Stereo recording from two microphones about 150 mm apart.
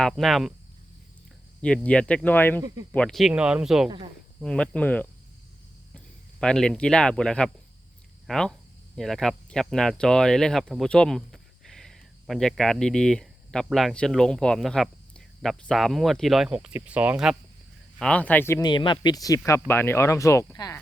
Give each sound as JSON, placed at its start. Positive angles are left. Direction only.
{"t": 0.0, "sound": "speech", "side_deg": 0}
{"t": 1.6, "sound": "speech", "side_deg": 5}
{"t": 2.6, "sound": "speech", "side_deg": -25}
{"t": 2.9, "sound": "speech", "side_deg": 5}
{"t": 3.8, "sound": "speech", "side_deg": -35}
{"t": 4.4, "sound": "speech", "side_deg": 5}
{"t": 6.4, "sound": "speech", "side_deg": 5}
{"t": 18.0, "sound": "speech", "side_deg": 10}
{"t": 18.6, "sound": "speech", "side_deg": 30}